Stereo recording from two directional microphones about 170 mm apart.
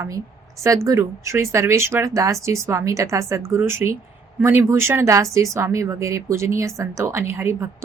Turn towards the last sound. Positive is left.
turn(degrees=-15)  # may be behind; listen again after turning